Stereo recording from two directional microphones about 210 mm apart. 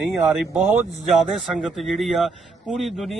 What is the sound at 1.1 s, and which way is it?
Speech, centre (ahead or behind).